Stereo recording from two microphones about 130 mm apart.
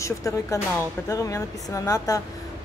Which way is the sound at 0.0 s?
25° left (ahead or behind).